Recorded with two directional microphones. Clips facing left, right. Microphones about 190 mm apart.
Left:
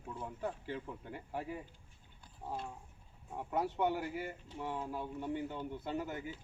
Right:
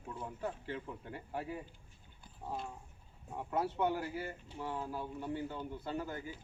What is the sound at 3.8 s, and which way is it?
Speech, 15° left (ahead or behind).